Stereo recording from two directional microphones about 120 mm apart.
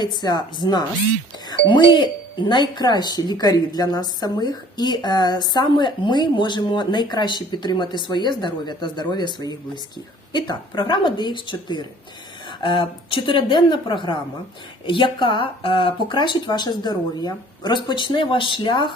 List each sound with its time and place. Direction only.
0.2 s a woman's voice: 35° left (ahead or behind)